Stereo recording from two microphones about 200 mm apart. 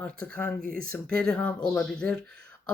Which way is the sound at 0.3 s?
5° left (ahead or behind).